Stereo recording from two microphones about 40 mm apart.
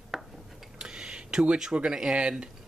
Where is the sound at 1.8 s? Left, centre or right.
Right.